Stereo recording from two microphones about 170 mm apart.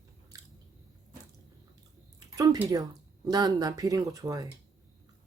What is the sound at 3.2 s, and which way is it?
Speech, 25° right (ahead or behind).